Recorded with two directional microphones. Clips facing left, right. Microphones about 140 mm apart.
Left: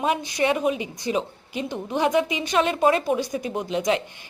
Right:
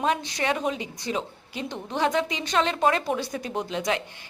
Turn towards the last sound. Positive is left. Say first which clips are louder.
# left 4 dB
turn(degrees=15)  # may be behind; listen again after turning